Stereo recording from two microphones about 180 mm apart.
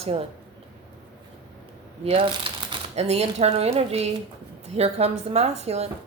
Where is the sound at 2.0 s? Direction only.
30° right (ahead or behind).